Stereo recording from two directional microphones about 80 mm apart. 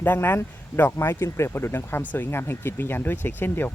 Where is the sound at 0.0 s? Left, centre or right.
Left.